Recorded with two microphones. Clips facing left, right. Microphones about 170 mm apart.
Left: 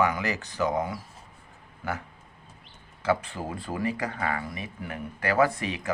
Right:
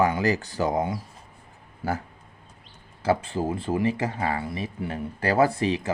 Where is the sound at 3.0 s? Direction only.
30° right (ahead or behind).